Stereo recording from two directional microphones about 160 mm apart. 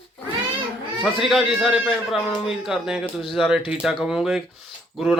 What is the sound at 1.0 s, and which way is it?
Speech, centre (ahead or behind).